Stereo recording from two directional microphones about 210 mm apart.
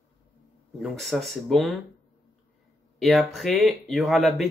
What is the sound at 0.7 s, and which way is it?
Speech, centre (ahead or behind).